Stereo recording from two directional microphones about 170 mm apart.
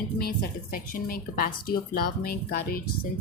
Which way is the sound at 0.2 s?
60° left (ahead or behind).